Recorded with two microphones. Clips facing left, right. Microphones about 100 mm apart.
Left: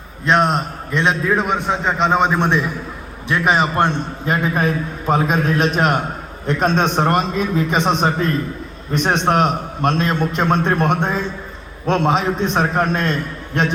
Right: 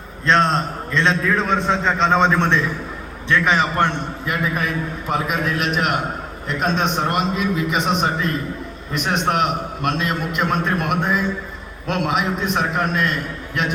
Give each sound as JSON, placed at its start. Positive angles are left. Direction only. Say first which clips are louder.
{"t": 0.3, "sound": "a man's voice", "louder": "left 1 dB", "side_deg": 10}
{"t": 3.2, "sound": "a man's voice", "louder": "left 1 dB", "side_deg": 20}